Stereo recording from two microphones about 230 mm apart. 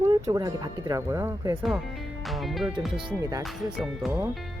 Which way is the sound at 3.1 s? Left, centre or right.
Centre.